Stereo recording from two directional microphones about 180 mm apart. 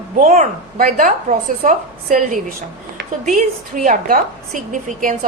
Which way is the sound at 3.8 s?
45° right (ahead or behind).